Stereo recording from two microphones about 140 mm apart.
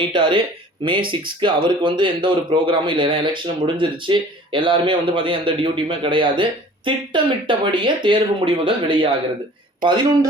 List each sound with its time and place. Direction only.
0.0 s speech: 35° right (ahead or behind)